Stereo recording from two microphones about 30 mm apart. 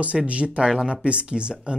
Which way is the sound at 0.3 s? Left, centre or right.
Right.